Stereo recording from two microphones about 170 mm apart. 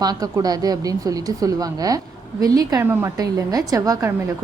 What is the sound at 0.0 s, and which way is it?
A woman's voice, 20° right (ahead or behind).